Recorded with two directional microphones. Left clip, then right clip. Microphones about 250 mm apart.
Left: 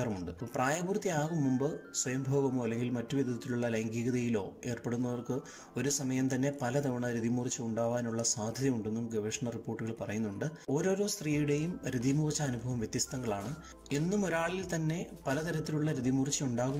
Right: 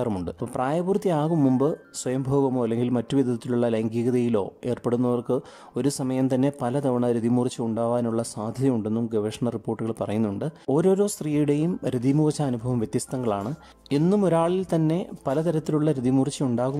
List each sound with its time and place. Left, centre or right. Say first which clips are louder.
0.0 s a man's voice: right 10 dB; centre
1.4 s speech: right 12 dB; right
2.0 s a man's voice: right 10 dB; right